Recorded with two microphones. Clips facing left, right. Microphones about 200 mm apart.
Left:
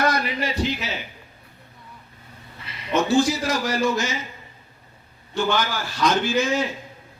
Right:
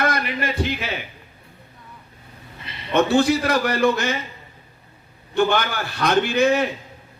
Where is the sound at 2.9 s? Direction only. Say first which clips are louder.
Right 2 dB; 60° right (ahead or behind).